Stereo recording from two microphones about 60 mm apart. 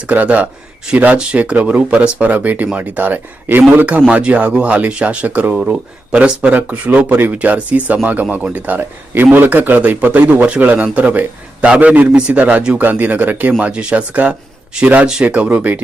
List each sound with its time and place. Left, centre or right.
0.1 s speech: right